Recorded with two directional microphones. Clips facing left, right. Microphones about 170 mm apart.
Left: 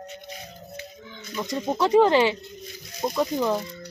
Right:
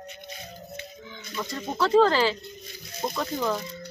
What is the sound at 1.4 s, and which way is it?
Speech, 15° left (ahead or behind).